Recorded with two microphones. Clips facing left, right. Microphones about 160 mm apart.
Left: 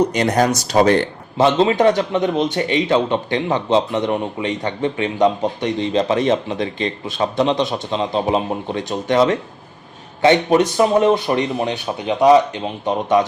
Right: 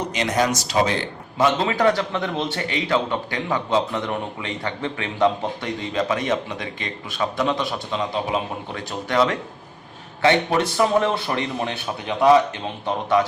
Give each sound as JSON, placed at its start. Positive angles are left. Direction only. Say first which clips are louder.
{"t": 0.4, "sound": "speech", "louder": "left 6 dB", "side_deg": 55}
{"t": 1.4, "sound": "a man's voice", "louder": "left 5 dB", "side_deg": 25}